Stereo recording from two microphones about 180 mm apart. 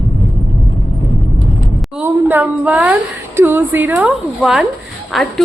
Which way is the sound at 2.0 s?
10° right (ahead or behind).